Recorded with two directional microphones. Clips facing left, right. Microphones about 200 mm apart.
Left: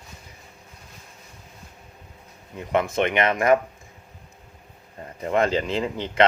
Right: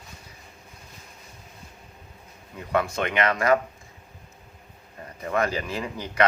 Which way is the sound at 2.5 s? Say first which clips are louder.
Left 3 dB; 20° left (ahead or behind).